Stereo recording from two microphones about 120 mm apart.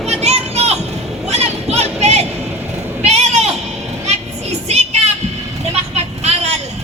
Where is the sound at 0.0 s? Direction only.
60° right (ahead or behind).